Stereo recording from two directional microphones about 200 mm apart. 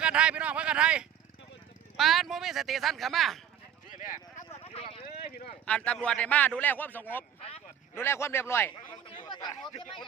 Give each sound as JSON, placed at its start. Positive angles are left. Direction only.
{"t": 0.0, "sound": "speech", "side_deg": -5}
{"t": 3.9, "sound": "vehicle", "side_deg": 40}
{"t": 5.6, "sound": "speech", "side_deg": 5}
{"t": 9.5, "sound": "a man's voice", "side_deg": 30}